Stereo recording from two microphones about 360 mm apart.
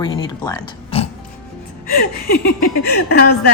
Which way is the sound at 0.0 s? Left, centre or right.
Centre.